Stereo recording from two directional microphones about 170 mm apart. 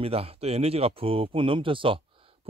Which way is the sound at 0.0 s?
35° right (ahead or behind).